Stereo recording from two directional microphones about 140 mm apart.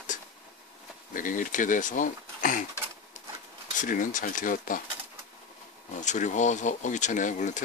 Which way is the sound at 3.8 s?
70° left (ahead or behind).